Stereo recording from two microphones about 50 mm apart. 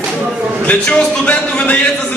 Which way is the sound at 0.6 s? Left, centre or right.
Left.